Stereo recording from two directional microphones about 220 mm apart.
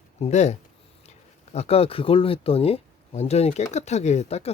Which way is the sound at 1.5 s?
30° left (ahead or behind).